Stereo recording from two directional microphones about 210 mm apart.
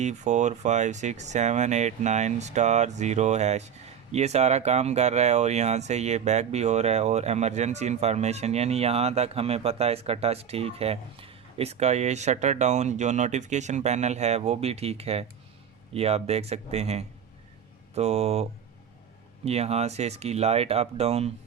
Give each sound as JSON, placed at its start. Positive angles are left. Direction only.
{"t": 0.0, "sound": "speech", "side_deg": -35}
{"t": 19.5, "sound": "speech", "side_deg": -30}